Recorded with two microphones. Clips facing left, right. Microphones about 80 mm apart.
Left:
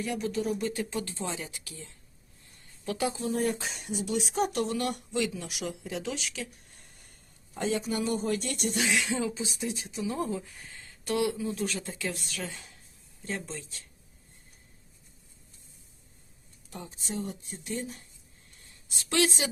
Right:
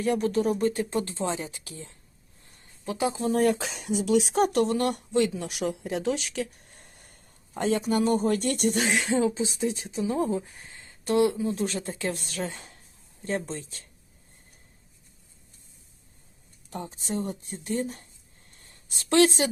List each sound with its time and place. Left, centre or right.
0.0 s speech: right
2.4 s a sound: right
2.8 s speech: right
3.2 s speech: right
16.6 s speech: right
18.5 s a sound: right